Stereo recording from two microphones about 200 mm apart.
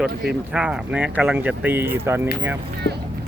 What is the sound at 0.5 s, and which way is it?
Speech, 5° right (ahead or behind).